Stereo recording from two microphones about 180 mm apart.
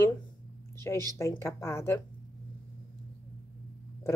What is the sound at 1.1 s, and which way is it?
Speech, 15° left (ahead or behind).